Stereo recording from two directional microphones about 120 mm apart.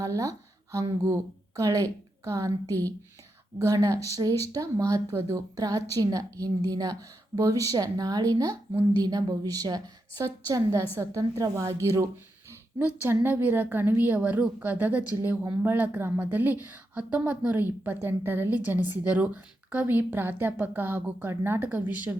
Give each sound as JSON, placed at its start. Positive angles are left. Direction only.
{"t": 0.0, "sound": "a woman's voice", "side_deg": -30}